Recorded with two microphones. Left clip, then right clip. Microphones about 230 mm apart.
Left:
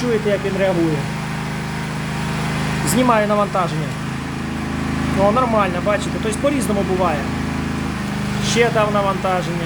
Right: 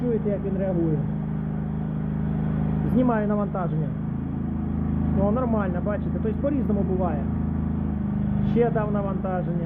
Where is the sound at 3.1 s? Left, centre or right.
Left.